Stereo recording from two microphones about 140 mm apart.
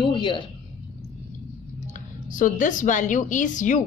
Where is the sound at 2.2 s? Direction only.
70° left (ahead or behind).